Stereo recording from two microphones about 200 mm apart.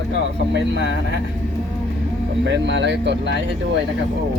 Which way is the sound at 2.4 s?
65° right (ahead or behind).